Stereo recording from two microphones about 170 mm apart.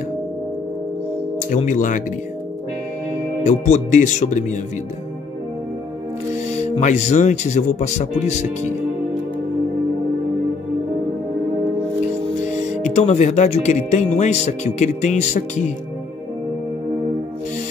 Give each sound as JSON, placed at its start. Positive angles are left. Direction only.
{"t": 1.5, "sound": "speech", "side_deg": 50}
{"t": 3.4, "sound": "speech", "side_deg": 45}
{"t": 6.8, "sound": "speech", "side_deg": 45}
{"t": 12.9, "sound": "speech", "side_deg": 40}